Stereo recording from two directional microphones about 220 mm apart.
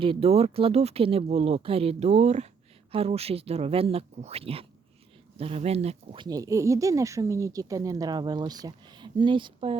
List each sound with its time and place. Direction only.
0.0 s speech: 25° right (ahead or behind)